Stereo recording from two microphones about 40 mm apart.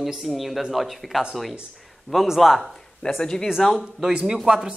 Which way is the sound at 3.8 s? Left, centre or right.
Centre.